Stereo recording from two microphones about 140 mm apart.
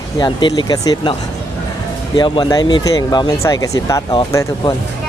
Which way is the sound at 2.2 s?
35° left (ahead or behind).